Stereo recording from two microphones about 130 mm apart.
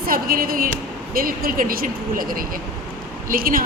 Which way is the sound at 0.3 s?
90° right.